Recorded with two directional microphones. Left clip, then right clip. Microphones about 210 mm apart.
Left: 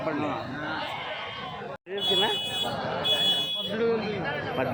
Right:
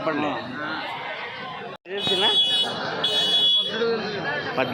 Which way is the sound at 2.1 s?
Centre (ahead or behind).